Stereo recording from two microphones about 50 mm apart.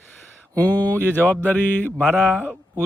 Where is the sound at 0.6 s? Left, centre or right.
Left.